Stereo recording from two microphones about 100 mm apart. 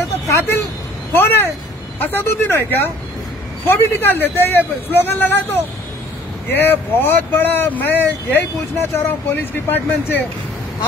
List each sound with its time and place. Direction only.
0.3 s speech: 25° left (ahead or behind)